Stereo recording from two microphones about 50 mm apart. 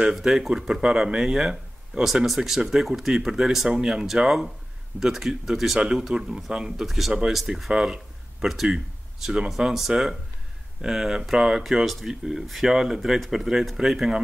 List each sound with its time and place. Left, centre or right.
0.0 s speech: centre